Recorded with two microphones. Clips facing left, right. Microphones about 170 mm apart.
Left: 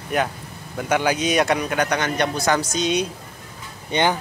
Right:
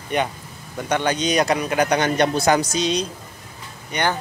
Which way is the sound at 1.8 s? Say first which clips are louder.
Right 3 dB; 30° right (ahead or behind).